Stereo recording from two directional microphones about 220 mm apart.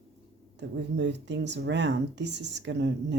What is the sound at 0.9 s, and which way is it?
Speech, 50° right (ahead or behind).